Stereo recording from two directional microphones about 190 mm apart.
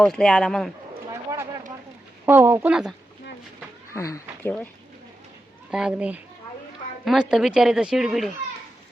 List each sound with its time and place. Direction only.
0.0 s speech: 5° left (ahead or behind)
1.1 s a sound: 15° right (ahead or behind)
2.2 s speech: 10° right (ahead or behind)
3.9 s speech: 15° left (ahead or behind)
5.7 s speech: 5° right (ahead or behind)